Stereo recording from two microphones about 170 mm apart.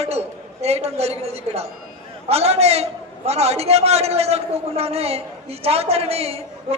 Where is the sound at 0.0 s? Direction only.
35° right (ahead or behind).